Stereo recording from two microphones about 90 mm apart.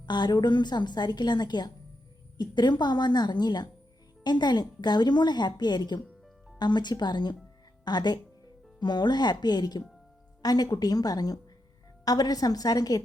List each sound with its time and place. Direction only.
0.0 s a woman's voice: 55° left (ahead or behind)